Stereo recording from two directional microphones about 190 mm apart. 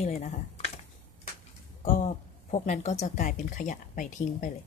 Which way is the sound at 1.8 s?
40° left (ahead or behind).